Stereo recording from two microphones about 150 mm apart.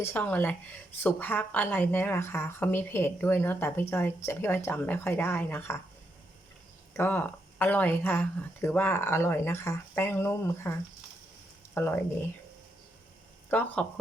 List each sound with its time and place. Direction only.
0.0 s a woman's voice: 10° left (ahead or behind)
6.9 s a woman's voice: 15° left (ahead or behind)
13.5 s a woman's voice: 10° left (ahead or behind)